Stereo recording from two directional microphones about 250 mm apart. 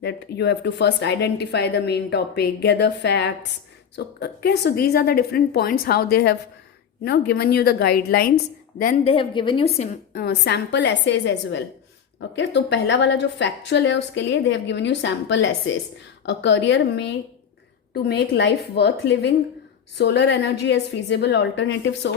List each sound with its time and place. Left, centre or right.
0.0 s a woman's voice: left
9.1 s a woman's voice: centre
10.1 s speech: left